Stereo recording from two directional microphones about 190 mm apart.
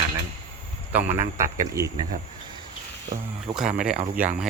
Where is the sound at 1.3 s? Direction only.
15° right (ahead or behind).